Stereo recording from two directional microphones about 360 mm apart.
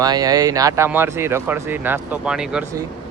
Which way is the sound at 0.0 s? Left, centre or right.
Centre.